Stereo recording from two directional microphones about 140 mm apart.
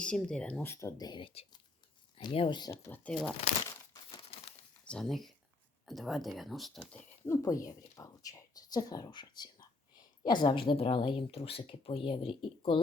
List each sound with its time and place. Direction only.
0.0 s speech: 5° left (ahead or behind)
0.7 s speech: 20° left (ahead or behind)
2.8 s speech: 10° left (ahead or behind)
4.1 s crumpling: 40° left (ahead or behind)
4.9 s speech: 5° left (ahead or behind)
7.3 s speech: 25° left (ahead or behind)